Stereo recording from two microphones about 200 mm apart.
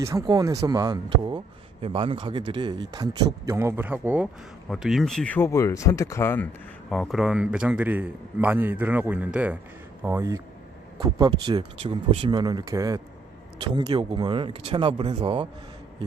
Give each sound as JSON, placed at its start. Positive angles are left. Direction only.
{"t": 0.0, "sound": "speech", "side_deg": -15}
{"t": 6.9, "sound": "a man's voice", "side_deg": 0}